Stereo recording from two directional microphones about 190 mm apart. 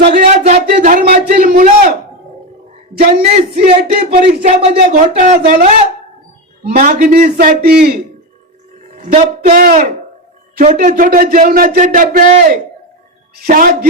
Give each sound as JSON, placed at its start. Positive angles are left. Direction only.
{"t": 0.0, "sound": "a man's voice", "side_deg": -50}
{"t": 3.5, "sound": "a man's voice", "side_deg": -50}
{"t": 4.3, "sound": "a man's voice", "side_deg": -35}
{"t": 9.0, "sound": "a man's voice", "side_deg": -40}